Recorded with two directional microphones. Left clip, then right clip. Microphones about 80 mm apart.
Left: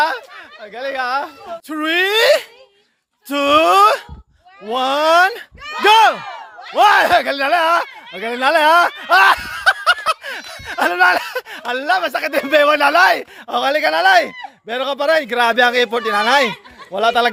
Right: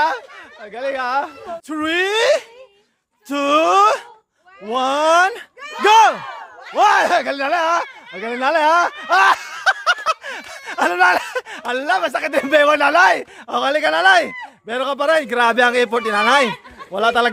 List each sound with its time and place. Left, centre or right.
0.6 s speech: centre
3.2 s speech: left
4.7 s speech: left
6.7 s speech: left
9.0 s a sound: left; by 11.4 s centre
11.4 s speech: centre